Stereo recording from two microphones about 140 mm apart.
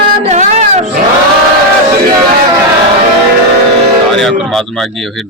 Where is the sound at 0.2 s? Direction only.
55° right (ahead or behind).